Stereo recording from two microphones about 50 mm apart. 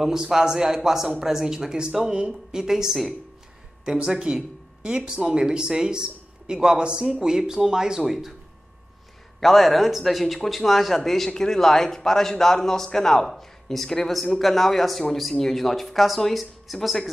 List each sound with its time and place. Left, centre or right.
0.0 s speech: centre
3.8 s speech: centre
9.4 s speech: centre